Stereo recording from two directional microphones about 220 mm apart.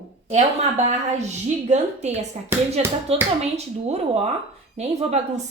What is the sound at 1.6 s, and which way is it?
A woman's voice, 30° right (ahead or behind).